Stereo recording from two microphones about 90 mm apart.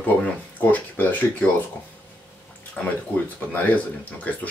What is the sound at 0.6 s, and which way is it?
Speech, 20° left (ahead or behind).